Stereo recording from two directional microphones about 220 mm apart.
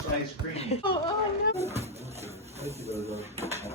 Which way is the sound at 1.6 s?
30° right (ahead or behind).